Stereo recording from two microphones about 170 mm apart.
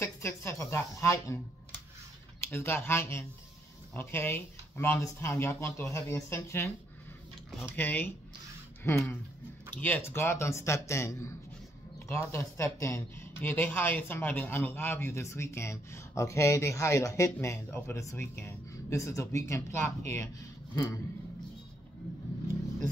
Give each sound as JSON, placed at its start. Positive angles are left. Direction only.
{"t": 0.0, "sound": "a woman's voice", "side_deg": 15}
{"t": 2.4, "sound": "speech", "side_deg": 15}